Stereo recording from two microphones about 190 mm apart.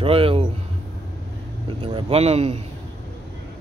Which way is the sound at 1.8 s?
30° right (ahead or behind).